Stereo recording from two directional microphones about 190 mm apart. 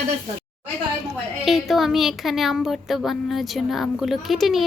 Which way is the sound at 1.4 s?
Centre (ahead or behind).